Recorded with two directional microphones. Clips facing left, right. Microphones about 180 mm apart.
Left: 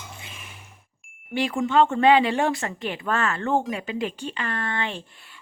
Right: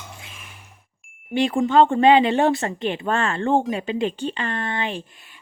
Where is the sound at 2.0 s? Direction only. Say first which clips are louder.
Right 3 dB; 20° right (ahead or behind).